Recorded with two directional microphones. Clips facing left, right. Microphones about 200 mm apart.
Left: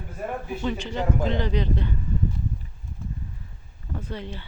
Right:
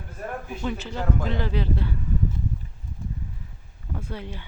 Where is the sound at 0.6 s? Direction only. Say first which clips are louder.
Left 2 dB; 5° right (ahead or behind).